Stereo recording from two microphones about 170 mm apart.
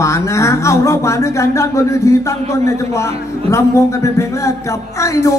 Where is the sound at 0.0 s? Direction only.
15° left (ahead or behind).